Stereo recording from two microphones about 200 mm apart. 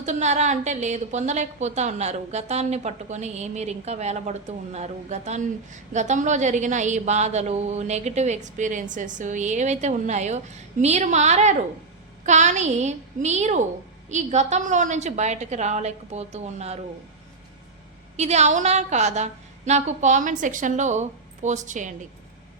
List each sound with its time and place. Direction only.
0.0 s a woman's voice: 35° right (ahead or behind)
18.2 s a woman's voice: 35° right (ahead or behind)